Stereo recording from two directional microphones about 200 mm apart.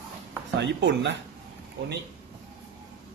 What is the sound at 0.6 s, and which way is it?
Speech, 60° right (ahead or behind).